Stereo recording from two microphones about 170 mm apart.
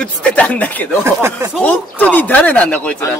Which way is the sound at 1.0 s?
15° right (ahead or behind).